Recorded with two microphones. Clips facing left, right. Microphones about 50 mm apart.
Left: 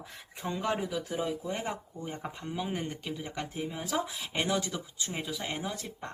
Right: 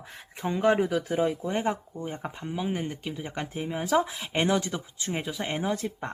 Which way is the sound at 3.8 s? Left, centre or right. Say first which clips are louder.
Right 10 dB; right.